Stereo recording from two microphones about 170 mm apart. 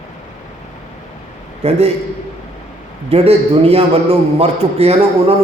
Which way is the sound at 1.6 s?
40° right (ahead or behind).